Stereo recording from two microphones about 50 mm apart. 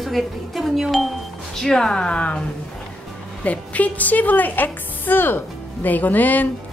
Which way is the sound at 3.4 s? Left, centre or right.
Left.